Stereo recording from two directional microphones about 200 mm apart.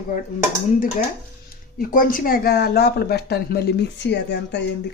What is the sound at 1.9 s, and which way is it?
Speech, 40° left (ahead or behind).